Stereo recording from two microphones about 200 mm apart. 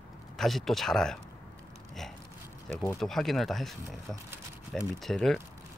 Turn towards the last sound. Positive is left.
turn(degrees=0)  # may be behind; listen again after turning